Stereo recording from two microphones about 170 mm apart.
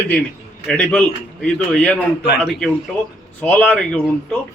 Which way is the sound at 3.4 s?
10° left (ahead or behind).